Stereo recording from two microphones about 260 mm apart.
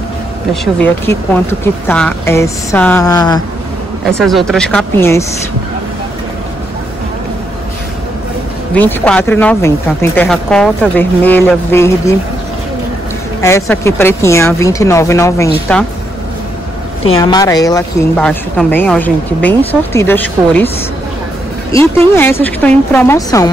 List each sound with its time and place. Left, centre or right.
0.5 s speech: centre
4.2 s speech: centre
8.7 s speech: centre
13.4 s speech: centre
17.0 s speech: centre
21.7 s speech: centre